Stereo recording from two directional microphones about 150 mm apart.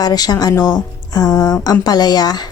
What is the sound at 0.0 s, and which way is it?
A woman's voice, 25° left (ahead or behind).